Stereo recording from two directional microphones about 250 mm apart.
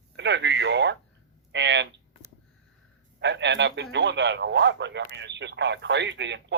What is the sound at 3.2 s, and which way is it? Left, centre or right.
Speech, right.